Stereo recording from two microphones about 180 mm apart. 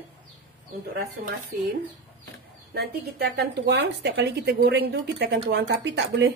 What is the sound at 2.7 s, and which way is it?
Speech, 65° right (ahead or behind).